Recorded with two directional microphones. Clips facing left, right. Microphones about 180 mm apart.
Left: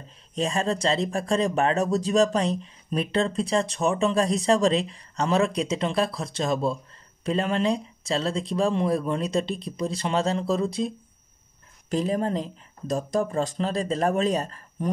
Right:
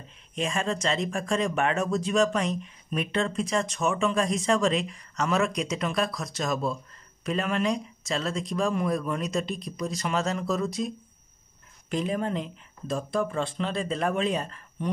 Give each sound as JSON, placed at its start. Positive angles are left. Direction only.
{"t": 0.3, "sound": "speech", "side_deg": 35}
{"t": 11.9, "sound": "speech", "side_deg": 35}